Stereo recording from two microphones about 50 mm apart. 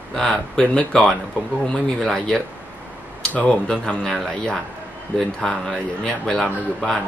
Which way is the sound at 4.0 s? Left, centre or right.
Centre.